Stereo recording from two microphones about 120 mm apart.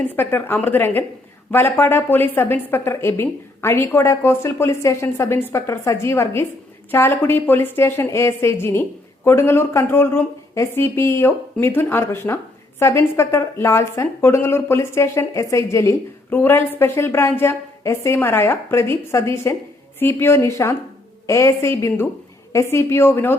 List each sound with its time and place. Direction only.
0.0 s a woman's voice: 15° left (ahead or behind)